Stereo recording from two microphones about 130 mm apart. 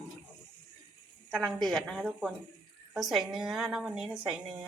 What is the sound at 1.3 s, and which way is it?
A woman's voice, 5° left (ahead or behind).